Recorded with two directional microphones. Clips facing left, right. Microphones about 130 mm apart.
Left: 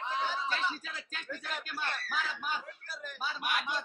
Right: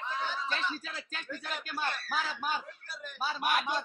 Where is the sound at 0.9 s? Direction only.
35° right (ahead or behind).